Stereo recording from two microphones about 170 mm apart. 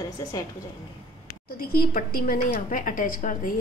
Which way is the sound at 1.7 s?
60° left (ahead or behind).